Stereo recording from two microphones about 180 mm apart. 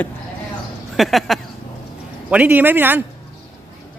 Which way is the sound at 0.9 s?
Centre (ahead or behind).